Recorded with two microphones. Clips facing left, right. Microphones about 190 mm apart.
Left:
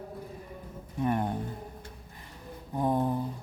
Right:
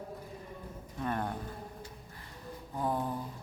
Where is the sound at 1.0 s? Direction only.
20° left (ahead or behind).